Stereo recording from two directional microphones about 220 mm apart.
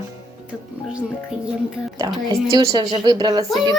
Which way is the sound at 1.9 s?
15° right (ahead or behind).